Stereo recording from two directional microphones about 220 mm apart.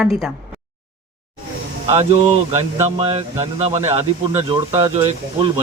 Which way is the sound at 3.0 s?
25° right (ahead or behind).